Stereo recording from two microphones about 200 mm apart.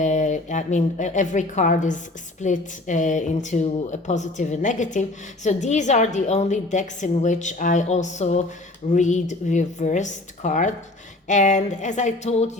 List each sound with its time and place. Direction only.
0.0 s a woman's voice: 40° left (ahead or behind)